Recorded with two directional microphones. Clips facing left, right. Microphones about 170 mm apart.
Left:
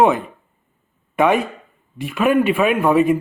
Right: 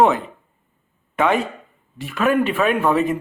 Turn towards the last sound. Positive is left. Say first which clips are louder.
# left 3 dB
turn(degrees=10)  # may be behind; listen again after turning